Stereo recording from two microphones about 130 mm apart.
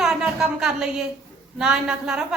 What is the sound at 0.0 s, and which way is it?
A woman's voice, 5° right (ahead or behind).